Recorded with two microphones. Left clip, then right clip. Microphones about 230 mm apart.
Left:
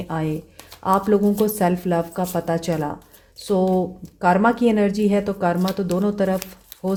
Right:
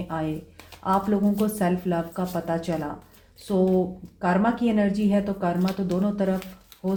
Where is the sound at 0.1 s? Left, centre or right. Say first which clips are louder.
Left 3 dB; left.